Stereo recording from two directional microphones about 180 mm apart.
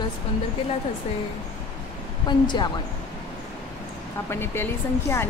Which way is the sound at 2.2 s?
25° left (ahead or behind).